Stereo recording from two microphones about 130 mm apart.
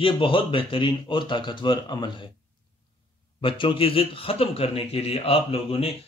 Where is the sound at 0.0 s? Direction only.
40° left (ahead or behind).